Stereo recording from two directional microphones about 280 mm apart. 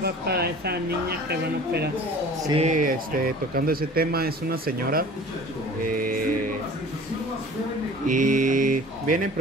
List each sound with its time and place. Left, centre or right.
0.0 s speech: right
2.4 s speech: right
5.9 s mantra: right
8.1 s mantra: right